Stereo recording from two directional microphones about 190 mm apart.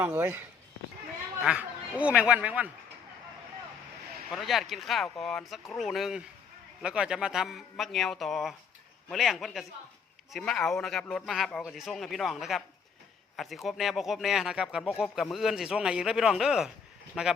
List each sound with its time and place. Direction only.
0.0 s speech: 10° right (ahead or behind)
1.5 s speech: 5° right (ahead or behind)
4.3 s speech: centre (ahead or behind)